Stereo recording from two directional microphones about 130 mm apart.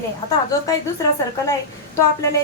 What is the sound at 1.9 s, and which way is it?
Speech, 20° left (ahead or behind).